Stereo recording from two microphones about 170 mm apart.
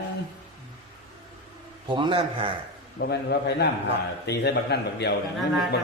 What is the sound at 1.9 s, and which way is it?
Speech, 30° right (ahead or behind).